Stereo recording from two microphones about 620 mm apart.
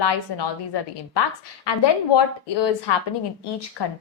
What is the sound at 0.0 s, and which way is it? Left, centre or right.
A woman's voice, left.